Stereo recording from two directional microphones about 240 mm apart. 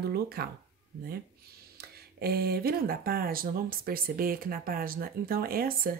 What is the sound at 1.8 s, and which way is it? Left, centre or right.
Speech, right.